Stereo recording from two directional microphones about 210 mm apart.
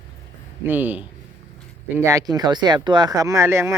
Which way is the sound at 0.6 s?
10° right (ahead or behind).